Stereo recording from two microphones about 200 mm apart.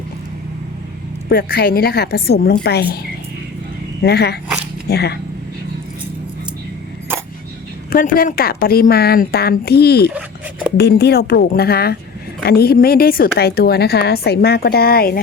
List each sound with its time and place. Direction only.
1.3 s a woman's voice: 50° left (ahead or behind)
4.0 s a woman's voice: 55° left (ahead or behind)
7.1 s a sound: 10° right (ahead or behind)
7.9 s a woman's voice: 45° left (ahead or behind)